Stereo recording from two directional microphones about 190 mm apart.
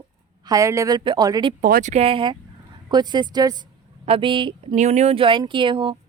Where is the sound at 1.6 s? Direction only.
45° right (ahead or behind).